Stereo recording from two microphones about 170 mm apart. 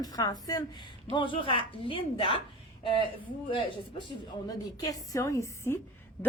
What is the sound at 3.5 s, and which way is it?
A woman's voice, 25° left (ahead or behind).